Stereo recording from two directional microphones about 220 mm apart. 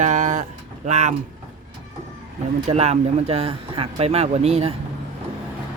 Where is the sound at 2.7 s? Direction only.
30° right (ahead or behind).